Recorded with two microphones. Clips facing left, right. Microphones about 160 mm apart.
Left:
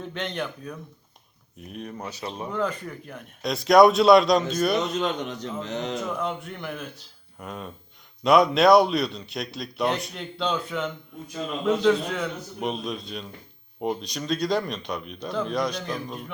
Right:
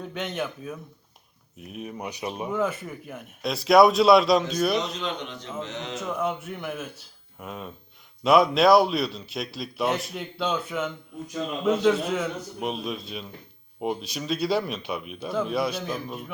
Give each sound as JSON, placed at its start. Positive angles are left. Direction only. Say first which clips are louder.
{"t": 0.0, "sound": "speech", "louder": "even", "side_deg": 0}
{"t": 4.9, "sound": "a man's voice", "louder": "left 5 dB", "side_deg": 50}
{"t": 5.9, "sound": "speech", "louder": "even", "side_deg": -5}